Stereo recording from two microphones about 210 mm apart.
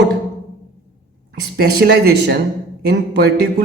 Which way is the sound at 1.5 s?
50° right (ahead or behind).